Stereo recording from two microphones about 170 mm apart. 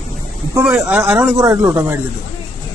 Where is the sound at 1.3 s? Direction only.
15° right (ahead or behind).